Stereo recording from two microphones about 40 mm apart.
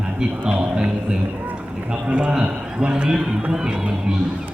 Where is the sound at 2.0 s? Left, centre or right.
Right.